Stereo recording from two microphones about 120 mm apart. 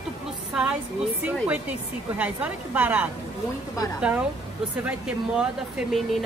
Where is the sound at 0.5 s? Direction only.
5° right (ahead or behind).